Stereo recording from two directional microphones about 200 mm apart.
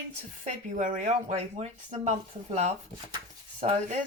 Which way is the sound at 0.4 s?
40° right (ahead or behind).